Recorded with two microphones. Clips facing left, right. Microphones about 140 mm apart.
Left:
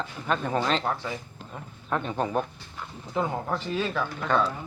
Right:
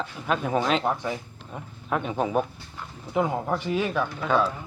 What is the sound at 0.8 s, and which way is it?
Speech, 15° right (ahead or behind).